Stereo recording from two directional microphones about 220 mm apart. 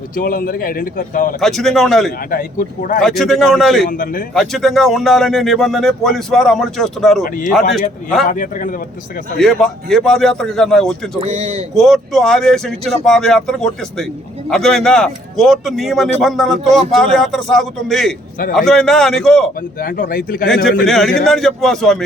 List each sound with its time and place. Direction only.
0.2 s a man's voice: 40° left (ahead or behind)
1.4 s speech: centre (ahead or behind)
2.3 s a man's voice: 40° left (ahead or behind)
3.0 s speech: centre (ahead or behind)
3.8 s a man's voice: 40° left (ahead or behind)
4.4 s speech: centre (ahead or behind)
8.3 s a man's voice: 35° left (ahead or behind)
9.4 s speech: centre (ahead or behind)
11.2 s speech: 30° right (ahead or behind)
11.7 s speech: centre (ahead or behind)
19.8 s a man's voice: 40° left (ahead or behind)
20.8 s speech: centre (ahead or behind)